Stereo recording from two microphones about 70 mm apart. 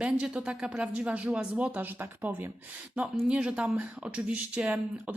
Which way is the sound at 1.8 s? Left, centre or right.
Right.